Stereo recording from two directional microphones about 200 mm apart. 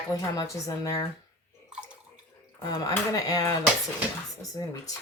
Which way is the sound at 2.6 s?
20° left (ahead or behind).